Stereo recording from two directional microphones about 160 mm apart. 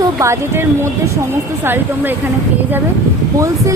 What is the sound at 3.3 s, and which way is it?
Speech, 20° right (ahead or behind).